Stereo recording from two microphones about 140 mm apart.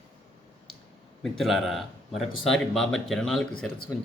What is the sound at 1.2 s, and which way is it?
Speech, centre (ahead or behind).